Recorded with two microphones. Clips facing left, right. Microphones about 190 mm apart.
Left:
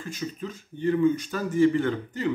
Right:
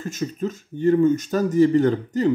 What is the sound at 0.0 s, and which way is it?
Speech, 45° right (ahead or behind).